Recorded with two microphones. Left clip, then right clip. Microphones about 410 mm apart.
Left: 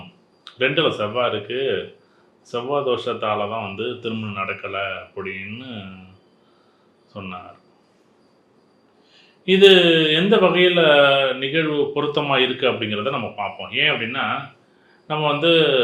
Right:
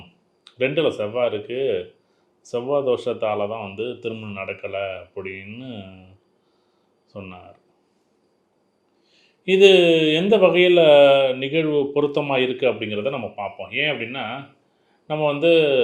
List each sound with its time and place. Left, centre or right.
0.4 s a man's voice: right
9.1 s a man's voice: right